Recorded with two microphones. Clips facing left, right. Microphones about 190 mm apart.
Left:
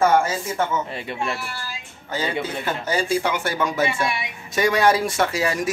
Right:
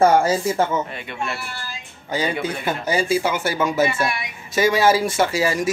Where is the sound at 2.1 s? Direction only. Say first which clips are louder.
Right 2 dB; 15° right (ahead or behind).